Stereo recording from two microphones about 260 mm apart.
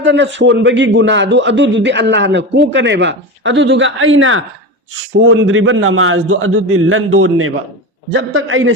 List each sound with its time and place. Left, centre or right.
0.0 s a man's voice: right